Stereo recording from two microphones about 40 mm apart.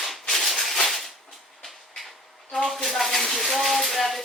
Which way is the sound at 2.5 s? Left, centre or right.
Centre.